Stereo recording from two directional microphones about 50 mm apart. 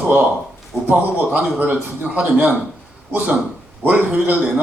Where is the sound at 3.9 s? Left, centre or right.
Right.